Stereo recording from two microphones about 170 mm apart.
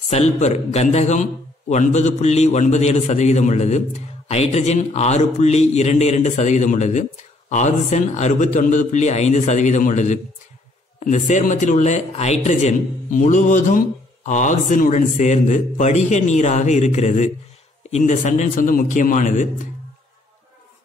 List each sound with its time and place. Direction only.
0.1 s a man's voice: 40° left (ahead or behind)